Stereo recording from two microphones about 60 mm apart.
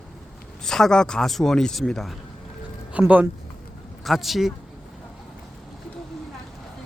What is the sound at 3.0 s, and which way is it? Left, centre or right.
Speech, right.